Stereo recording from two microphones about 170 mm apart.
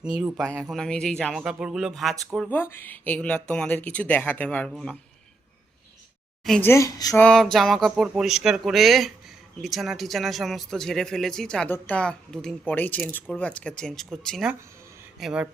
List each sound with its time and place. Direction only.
0.2 s speech: 5° right (ahead or behind)
2.5 s speech: 15° left (ahead or behind)
6.4 s a woman's voice: 5° left (ahead or behind)
6.7 s speech: 20° left (ahead or behind)
7.2 s speech: 5° left (ahead or behind)